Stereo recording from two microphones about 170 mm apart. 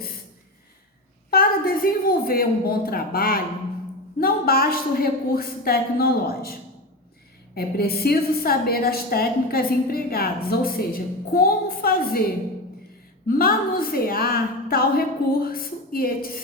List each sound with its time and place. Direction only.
1.3 s a woman's voice: 60° left (ahead or behind)
13.2 s a woman's voice: 60° left (ahead or behind)